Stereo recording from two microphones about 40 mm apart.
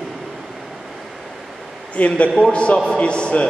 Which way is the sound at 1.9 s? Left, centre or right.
Left.